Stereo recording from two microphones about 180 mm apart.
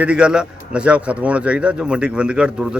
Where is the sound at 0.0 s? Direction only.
5° right (ahead or behind).